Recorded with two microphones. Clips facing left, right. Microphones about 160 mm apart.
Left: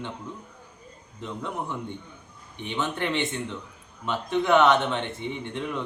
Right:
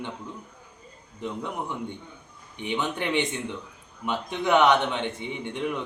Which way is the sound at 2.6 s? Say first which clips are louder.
Even; 15° right (ahead or behind).